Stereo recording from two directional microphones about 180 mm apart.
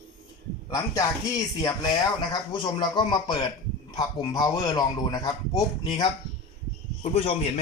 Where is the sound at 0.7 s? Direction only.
20° left (ahead or behind).